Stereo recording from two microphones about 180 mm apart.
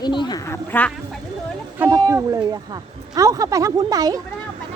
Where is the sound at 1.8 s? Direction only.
20° right (ahead or behind).